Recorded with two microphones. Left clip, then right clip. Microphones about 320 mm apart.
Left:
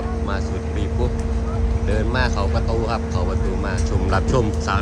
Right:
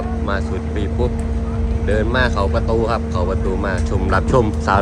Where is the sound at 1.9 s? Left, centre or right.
Centre.